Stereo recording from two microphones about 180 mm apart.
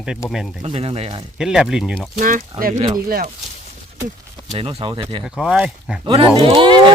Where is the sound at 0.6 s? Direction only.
30° right (ahead or behind).